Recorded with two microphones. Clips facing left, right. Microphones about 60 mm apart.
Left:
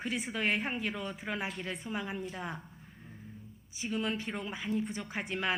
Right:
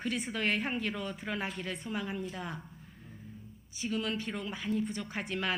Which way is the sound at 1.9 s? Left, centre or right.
Centre.